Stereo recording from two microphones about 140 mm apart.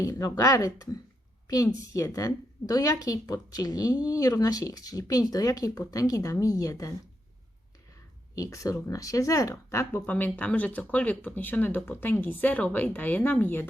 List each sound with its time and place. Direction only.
0.0 s a woman's voice: 25° left (ahead or behind)
8.4 s speech: 25° left (ahead or behind)